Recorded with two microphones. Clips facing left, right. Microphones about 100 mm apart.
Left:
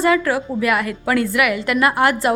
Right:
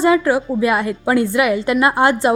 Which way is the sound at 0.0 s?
20° right (ahead or behind).